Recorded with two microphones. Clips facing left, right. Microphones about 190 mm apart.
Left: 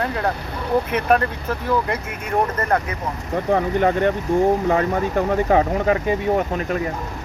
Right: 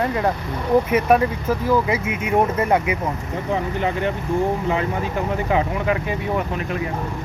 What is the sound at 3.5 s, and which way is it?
Speech, 55° left (ahead or behind).